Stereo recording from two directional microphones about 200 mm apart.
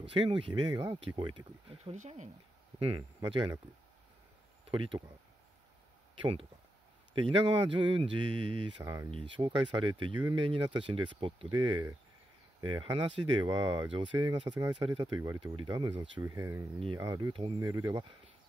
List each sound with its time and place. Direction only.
0.1 s speech: 25° right (ahead or behind)
3.0 s speech: 15° right (ahead or behind)
4.6 s speech: 25° right (ahead or behind)
7.2 s speech: 25° right (ahead or behind)
9.1 s speech: 25° right (ahead or behind)